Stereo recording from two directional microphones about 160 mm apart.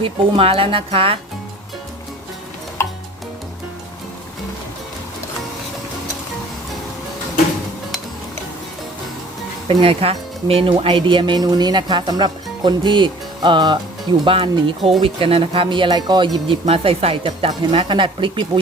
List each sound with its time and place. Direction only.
0.0 s speech: 35° right (ahead or behind)
2.8 s music: 15° left (ahead or behind)
9.6 s speech: 35° right (ahead or behind)